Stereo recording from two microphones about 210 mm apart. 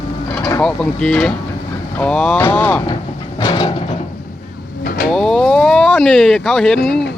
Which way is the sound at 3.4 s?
20° left (ahead or behind).